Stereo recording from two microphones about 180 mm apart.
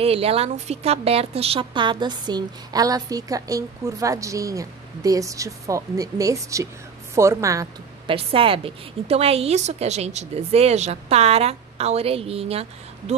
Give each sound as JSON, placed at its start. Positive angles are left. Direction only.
{"t": 0.0, "sound": "a woman's voice", "side_deg": -35}
{"t": 8.1, "sound": "a woman's voice", "side_deg": -30}